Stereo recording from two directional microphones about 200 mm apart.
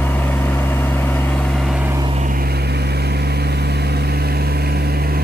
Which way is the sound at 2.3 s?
50° right (ahead or behind).